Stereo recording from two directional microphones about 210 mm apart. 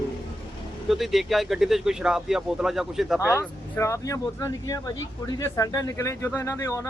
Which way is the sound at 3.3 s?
10° left (ahead or behind).